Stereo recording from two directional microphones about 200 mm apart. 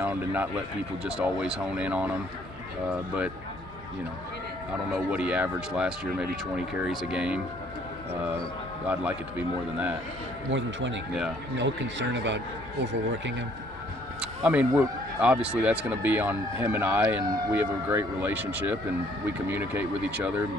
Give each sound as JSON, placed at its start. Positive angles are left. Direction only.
{"t": 0.0, "sound": "a man's voice", "side_deg": -10}
{"t": 4.9, "sound": "speech", "side_deg": -5}
{"t": 10.5, "sound": "a man's voice", "side_deg": -65}
{"t": 14.2, "sound": "speech", "side_deg": -5}